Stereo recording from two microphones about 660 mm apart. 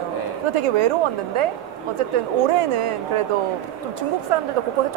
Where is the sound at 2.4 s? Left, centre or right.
Right.